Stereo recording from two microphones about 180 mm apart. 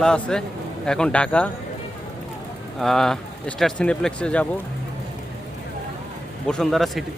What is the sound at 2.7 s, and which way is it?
Speech, centre (ahead or behind).